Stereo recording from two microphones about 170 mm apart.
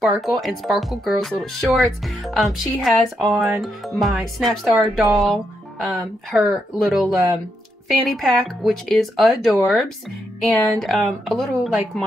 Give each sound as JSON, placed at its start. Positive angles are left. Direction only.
{"t": 0.0, "sound": "speech", "side_deg": 0}